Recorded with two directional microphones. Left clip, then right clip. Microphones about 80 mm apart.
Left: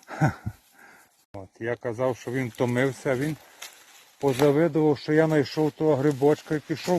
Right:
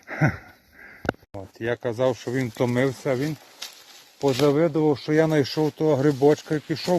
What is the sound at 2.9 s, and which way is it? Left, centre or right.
Speech, centre.